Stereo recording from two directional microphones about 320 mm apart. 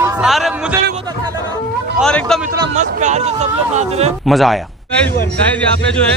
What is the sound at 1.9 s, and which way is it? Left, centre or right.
Speech, centre.